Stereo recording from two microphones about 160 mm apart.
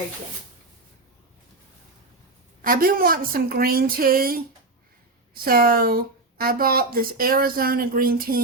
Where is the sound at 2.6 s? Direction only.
60° right (ahead or behind).